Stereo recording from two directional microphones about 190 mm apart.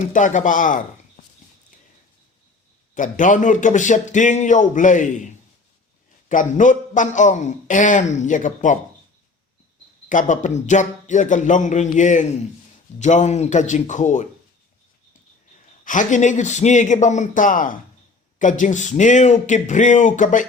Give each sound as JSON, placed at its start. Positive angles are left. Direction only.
{"t": 0.1, "sound": "speech", "side_deg": 40}
{"t": 2.9, "sound": "a man's voice", "side_deg": 40}
{"t": 10.1, "sound": "a man's voice", "side_deg": 40}
{"t": 15.8, "sound": "a man's voice", "side_deg": 45}